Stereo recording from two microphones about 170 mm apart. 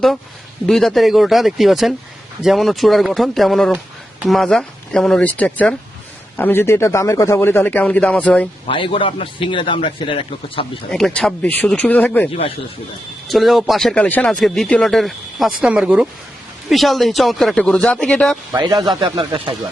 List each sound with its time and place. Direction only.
0.7 s speech: centre (ahead or behind)
8.6 s a man's voice: 30° left (ahead or behind)
10.9 s speech: 5° left (ahead or behind)
18.7 s speech: 25° right (ahead or behind)